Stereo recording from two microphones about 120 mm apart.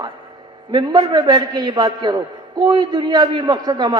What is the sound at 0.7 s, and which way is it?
A man's voice, 40° right (ahead or behind).